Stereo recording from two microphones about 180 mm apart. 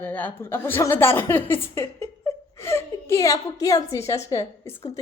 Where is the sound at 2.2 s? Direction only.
15° left (ahead or behind).